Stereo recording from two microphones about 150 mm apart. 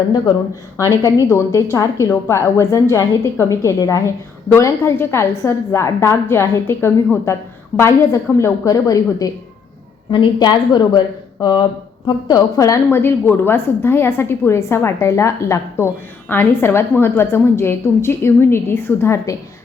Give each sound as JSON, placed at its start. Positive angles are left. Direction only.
{"t": 0.8, "sound": "a woman's voice", "side_deg": 20}